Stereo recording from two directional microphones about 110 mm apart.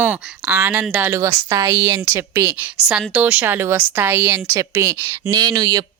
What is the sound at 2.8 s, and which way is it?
A woman's voice, 10° right (ahead or behind).